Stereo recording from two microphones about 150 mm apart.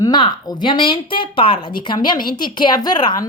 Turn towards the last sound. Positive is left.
turn(degrees=30)  # may be behind; listen again after turning